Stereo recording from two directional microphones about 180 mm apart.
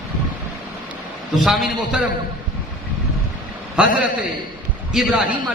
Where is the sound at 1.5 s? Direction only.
Centre (ahead or behind).